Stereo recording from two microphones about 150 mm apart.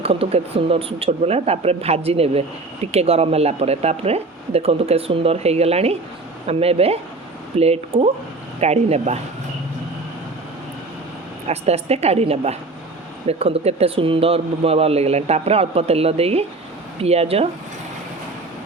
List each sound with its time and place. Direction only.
0.0 s a man's voice: 40° right (ahead or behind)
11.4 s a man's voice: 45° right (ahead or behind)